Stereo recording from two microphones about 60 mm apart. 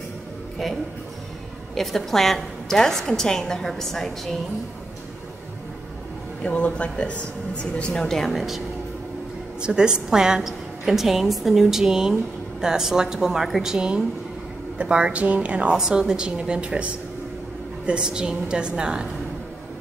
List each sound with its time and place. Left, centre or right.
1.8 s a woman's voice: centre
6.4 s a woman's voice: left; by 8.6 s centre
9.6 s a woman's voice: centre